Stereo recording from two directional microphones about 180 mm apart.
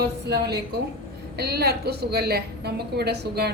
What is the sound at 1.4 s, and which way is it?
Speech, 60° right (ahead or behind).